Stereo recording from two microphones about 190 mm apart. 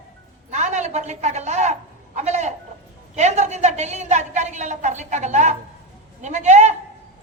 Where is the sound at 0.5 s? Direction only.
40° right (ahead or behind).